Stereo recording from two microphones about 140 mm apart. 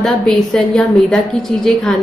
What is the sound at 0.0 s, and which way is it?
A woman's voice, 5° left (ahead or behind).